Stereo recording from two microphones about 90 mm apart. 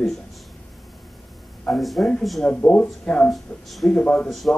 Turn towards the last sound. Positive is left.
turn(degrees=0)  # may be behind; listen again after turning